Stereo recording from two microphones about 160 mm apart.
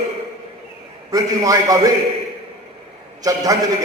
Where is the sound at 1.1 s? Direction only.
20° right (ahead or behind).